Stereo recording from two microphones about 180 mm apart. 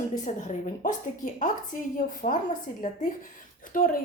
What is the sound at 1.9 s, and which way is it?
Speech, 45° left (ahead or behind).